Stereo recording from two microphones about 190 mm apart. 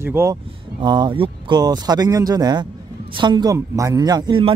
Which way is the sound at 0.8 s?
25° right (ahead or behind).